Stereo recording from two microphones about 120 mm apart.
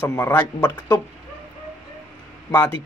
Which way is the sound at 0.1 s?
20° left (ahead or behind).